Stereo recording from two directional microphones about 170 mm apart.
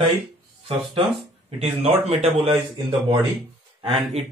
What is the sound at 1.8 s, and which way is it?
Speech, 40° right (ahead or behind).